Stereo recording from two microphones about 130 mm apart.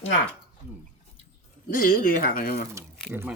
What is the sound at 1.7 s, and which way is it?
Speech, 90° left.